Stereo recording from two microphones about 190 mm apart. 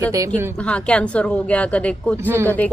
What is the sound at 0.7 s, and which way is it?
A woman's voice, 5° left (ahead or behind).